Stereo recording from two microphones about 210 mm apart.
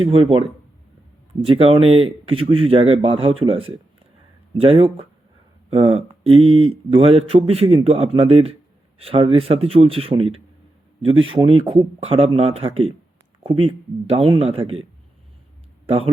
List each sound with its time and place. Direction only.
0.0 s speech: 25° right (ahead or behind)